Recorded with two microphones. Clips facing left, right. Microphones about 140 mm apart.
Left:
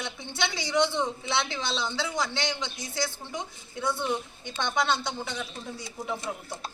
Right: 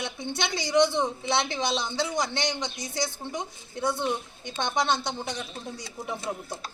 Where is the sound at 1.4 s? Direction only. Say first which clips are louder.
Right 3 dB; 15° right (ahead or behind).